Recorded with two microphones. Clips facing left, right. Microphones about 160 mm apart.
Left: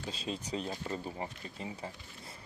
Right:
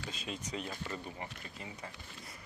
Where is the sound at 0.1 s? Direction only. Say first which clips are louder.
Left 5 dB; 30° left (ahead or behind).